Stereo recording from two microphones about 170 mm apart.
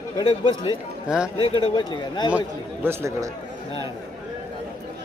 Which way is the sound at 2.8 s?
15° right (ahead or behind).